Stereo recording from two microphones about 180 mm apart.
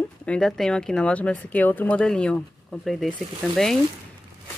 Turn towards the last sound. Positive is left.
turn(degrees=0)  # may be behind; listen again after turning